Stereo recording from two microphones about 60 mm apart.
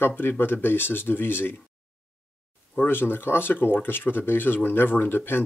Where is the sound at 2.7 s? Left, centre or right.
Left.